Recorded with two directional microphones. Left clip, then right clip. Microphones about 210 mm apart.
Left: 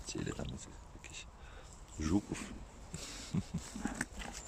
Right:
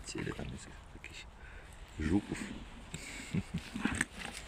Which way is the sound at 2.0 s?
Centre (ahead or behind).